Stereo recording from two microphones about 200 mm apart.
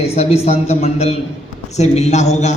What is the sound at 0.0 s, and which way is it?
A man's voice, 30° left (ahead or behind).